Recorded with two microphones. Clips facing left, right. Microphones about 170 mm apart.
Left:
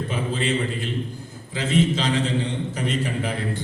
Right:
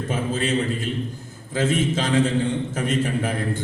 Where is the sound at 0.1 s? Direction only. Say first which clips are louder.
Right 3 dB; 45° right (ahead or behind).